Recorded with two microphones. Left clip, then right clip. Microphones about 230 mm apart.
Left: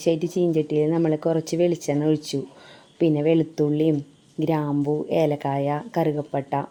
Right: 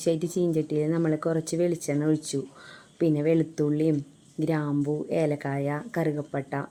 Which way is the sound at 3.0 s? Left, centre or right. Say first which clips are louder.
Left 4 dB; left.